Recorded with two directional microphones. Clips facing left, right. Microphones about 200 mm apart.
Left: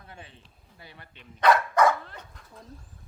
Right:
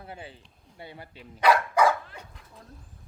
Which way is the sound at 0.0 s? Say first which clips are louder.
Right 6 dB; 30° right (ahead or behind).